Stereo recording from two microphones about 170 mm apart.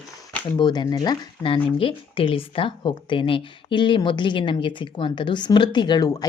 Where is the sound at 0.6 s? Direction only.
25° left (ahead or behind).